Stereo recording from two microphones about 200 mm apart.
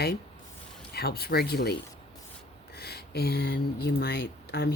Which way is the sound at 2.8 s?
55° left (ahead or behind).